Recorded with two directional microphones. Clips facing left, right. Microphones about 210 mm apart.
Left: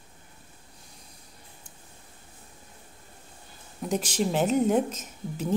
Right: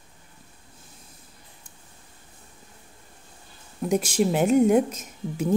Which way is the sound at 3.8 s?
10° right (ahead or behind).